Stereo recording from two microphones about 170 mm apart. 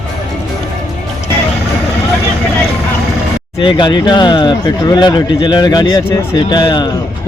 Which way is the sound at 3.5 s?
30° left (ahead or behind).